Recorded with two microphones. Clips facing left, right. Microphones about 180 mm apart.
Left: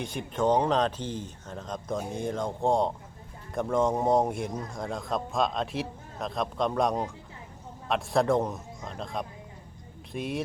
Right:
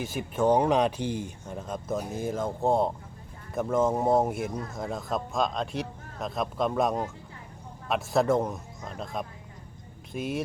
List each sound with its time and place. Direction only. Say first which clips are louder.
0.0 s a man's voice: right 2 dB; 5° right (ahead or behind)